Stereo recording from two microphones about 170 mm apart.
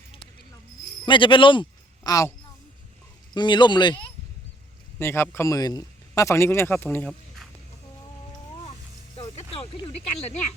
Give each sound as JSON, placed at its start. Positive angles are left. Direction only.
{"t": 1.0, "sound": "speech", "side_deg": 30}
{"t": 3.3, "sound": "speech", "side_deg": 25}
{"t": 4.9, "sound": "a man's voice", "side_deg": 15}
{"t": 9.4, "sound": "a sound", "side_deg": 35}